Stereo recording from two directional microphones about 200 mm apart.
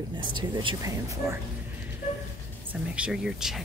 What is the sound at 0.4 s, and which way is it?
Speech, 25° right (ahead or behind).